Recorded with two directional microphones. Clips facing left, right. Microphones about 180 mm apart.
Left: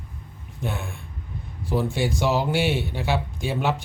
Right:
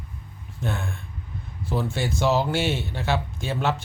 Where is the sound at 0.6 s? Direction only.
15° left (ahead or behind).